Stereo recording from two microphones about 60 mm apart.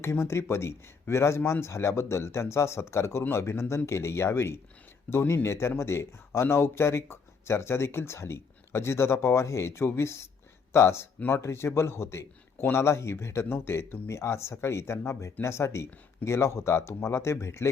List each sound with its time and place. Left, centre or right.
0.0 s a man's voice: left